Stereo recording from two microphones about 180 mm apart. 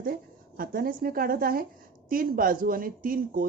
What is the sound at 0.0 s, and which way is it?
A woman's voice, 55° right (ahead or behind).